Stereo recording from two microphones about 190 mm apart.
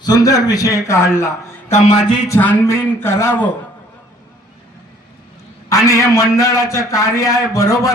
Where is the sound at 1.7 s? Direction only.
40° left (ahead or behind).